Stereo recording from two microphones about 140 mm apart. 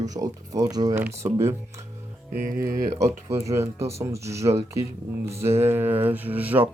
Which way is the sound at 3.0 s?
20° right (ahead or behind).